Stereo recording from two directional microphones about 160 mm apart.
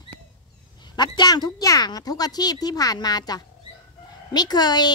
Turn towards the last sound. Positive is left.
turn(degrees=25)  # may be behind; listen again after turning